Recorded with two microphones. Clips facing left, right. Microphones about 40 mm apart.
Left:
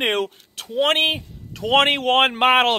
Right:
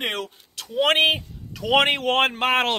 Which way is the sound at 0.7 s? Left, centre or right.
Centre.